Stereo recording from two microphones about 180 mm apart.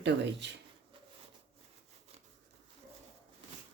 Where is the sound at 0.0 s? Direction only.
75° right (ahead or behind).